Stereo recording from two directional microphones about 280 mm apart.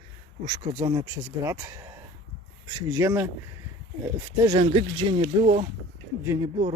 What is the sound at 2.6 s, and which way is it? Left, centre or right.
Speech, centre.